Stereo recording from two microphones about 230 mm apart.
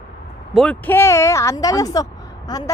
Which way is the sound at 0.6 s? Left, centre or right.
Centre.